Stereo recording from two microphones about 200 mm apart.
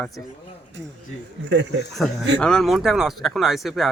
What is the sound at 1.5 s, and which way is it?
Speech, 60° right (ahead or behind).